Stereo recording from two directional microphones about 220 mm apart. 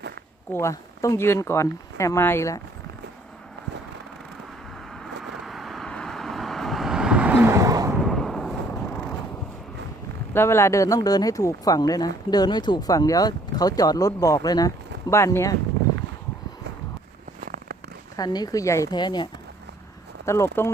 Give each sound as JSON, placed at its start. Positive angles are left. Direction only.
{"t": 0.5, "sound": "speech", "side_deg": 15}
{"t": 5.2, "sound": "vehicle", "side_deg": 0}
{"t": 8.0, "sound": "a sound", "side_deg": 0}
{"t": 10.3, "sound": "speech", "side_deg": 10}
{"t": 17.4, "sound": "a sound", "side_deg": -45}
{"t": 18.2, "sound": "speech", "side_deg": 20}